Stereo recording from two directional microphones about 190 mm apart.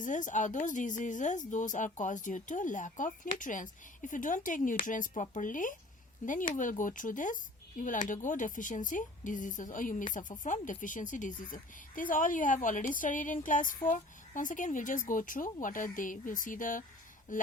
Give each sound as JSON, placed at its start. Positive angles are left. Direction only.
{"t": 0.0, "sound": "a woman's voice", "side_deg": 40}